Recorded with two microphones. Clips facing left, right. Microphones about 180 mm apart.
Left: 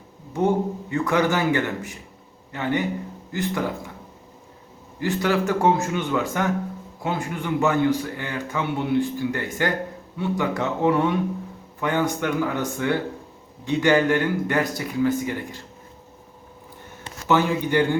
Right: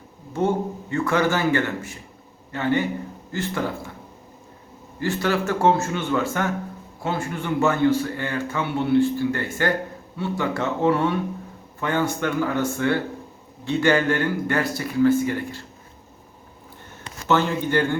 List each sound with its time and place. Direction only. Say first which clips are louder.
0.3 s a man's voice: left 1 dB; 15° left (ahead or behind)
4.9 s a man's voice: left 1 dB; 15° left (ahead or behind)
17.2 s a man's voice: left 1 dB; 15° left (ahead or behind)